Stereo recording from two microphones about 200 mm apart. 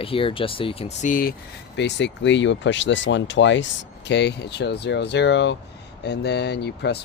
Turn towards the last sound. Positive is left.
turn(degrees=55)  # may be behind; listen again after turning